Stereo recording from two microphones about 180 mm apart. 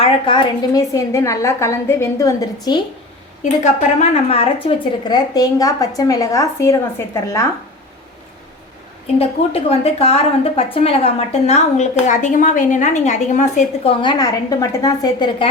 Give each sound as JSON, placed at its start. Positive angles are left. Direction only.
{"t": 0.0, "sound": "a woman's voice", "side_deg": 25}
{"t": 3.4, "sound": "a woman's voice", "side_deg": 40}
{"t": 9.1, "sound": "a woman's voice", "side_deg": 35}
{"t": 13.8, "sound": "a woman's voice", "side_deg": 25}